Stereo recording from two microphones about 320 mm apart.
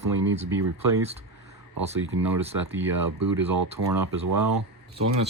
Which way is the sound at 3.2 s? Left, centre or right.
Right.